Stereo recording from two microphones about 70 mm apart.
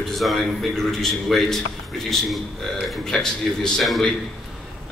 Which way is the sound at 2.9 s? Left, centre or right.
Centre.